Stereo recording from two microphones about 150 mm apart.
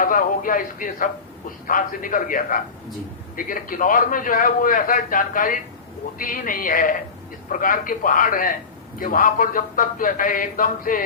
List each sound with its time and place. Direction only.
0.0 s a man's voice: 65° left (ahead or behind)